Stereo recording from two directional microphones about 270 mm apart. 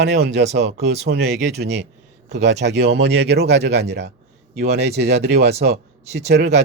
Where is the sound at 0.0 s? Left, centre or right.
Right.